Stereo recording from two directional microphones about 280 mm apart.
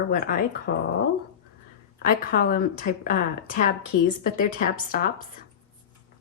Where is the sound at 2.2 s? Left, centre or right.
Left.